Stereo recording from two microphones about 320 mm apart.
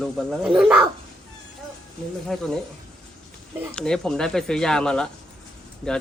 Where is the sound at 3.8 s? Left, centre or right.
Centre.